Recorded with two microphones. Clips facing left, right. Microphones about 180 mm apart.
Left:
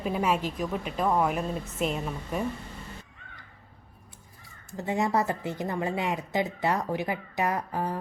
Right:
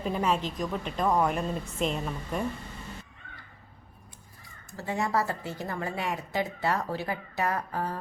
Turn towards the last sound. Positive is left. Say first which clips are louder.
# left 1 dB
turn(degrees=15)  # may be behind; listen again after turning